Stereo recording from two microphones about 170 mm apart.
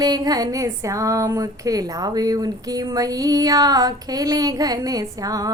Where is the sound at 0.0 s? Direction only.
20° right (ahead or behind).